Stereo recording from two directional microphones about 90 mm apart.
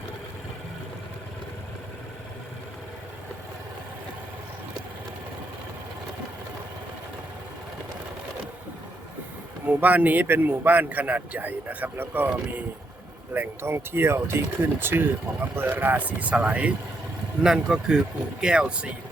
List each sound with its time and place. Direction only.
9.6 s speech: 20° right (ahead or behind)